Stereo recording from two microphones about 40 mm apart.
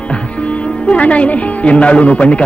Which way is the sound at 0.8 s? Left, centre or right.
Left.